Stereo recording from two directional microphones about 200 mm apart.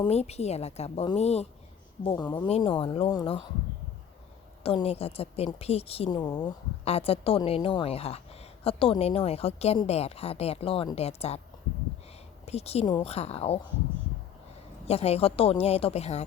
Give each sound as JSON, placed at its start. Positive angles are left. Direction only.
{"t": 0.0, "sound": "a woman's voice", "side_deg": 30}
{"t": 4.6, "sound": "a woman's voice", "side_deg": 30}
{"t": 12.5, "sound": "a woman's voice", "side_deg": 30}
{"t": 14.8, "sound": "a woman's voice", "side_deg": 30}